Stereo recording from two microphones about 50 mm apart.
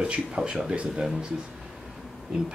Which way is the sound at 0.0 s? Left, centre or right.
Centre.